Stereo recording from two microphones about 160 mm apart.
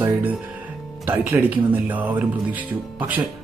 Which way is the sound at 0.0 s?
10° right (ahead or behind).